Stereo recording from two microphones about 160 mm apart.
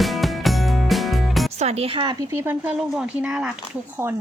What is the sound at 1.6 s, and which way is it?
Speech, 40° right (ahead or behind).